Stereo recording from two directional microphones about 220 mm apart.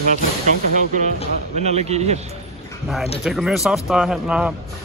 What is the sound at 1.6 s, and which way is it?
Speech, 30° right (ahead or behind).